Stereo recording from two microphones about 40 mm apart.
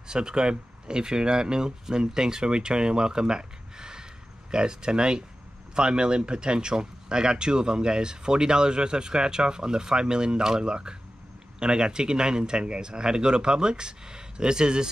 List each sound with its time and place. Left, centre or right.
0.1 s speech: centre